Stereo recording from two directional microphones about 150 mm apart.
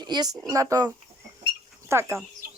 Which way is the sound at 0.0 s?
25° right (ahead or behind).